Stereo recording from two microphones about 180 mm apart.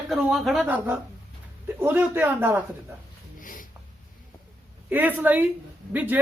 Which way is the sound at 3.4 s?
45° left (ahead or behind).